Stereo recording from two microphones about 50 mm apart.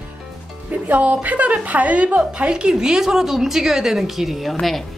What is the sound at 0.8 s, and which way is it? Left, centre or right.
A woman's voice, right.